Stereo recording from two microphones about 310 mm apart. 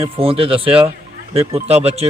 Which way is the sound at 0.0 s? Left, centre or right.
Centre.